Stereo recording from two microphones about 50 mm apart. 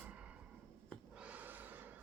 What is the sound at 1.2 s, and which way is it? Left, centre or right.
Snort, right.